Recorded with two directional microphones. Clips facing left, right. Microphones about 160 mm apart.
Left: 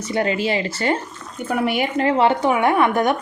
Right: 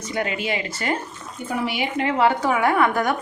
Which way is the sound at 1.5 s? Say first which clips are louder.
Left 5 dB; 55° left (ahead or behind).